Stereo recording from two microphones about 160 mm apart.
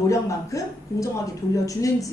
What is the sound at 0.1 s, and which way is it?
Speech, 20° left (ahead or behind).